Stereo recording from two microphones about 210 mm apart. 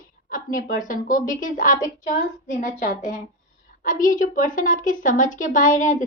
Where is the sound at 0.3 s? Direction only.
40° left (ahead or behind).